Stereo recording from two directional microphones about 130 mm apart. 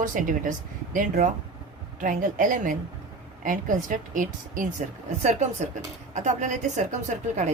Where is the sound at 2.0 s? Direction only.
90° right.